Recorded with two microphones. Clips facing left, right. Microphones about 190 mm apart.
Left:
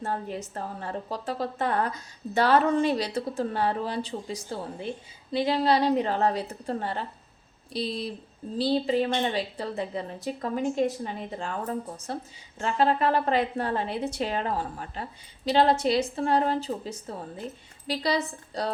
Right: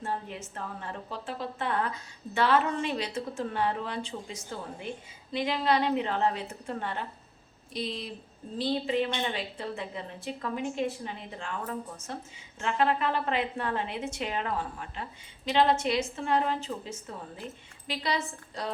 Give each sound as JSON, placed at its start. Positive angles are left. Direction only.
{"t": 0.0, "sound": "a woman's voice", "side_deg": 40}